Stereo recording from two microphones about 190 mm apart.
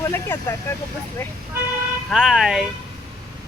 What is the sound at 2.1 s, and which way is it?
Speech, centre (ahead or behind).